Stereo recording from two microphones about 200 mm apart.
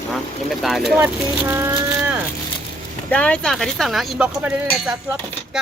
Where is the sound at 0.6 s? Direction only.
Centre (ahead or behind).